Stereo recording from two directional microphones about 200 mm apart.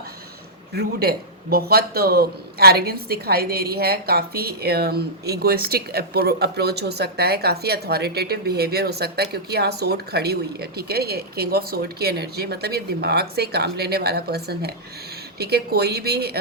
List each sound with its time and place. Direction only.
0.7 s a man's voice: 50° right (ahead or behind)